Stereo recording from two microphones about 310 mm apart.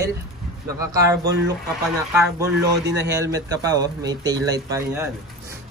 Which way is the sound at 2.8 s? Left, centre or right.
Right.